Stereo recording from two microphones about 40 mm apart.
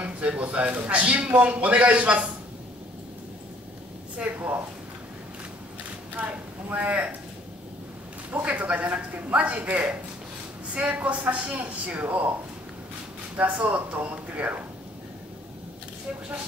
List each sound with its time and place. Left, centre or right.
0.0 s a sound: right
0.8 s speech: right
4.2 s speech: right
6.3 s speech: right
8.3 s speech: right
13.7 s speech: right